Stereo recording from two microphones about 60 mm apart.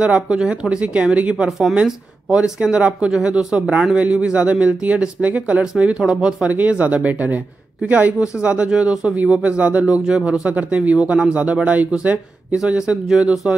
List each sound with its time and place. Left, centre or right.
0.0 s speech: centre
2.3 s speech: centre